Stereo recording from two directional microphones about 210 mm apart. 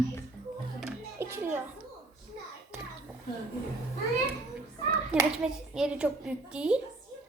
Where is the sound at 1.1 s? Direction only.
10° right (ahead or behind).